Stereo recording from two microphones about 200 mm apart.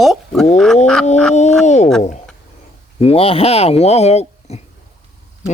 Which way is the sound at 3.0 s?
30° left (ahead or behind).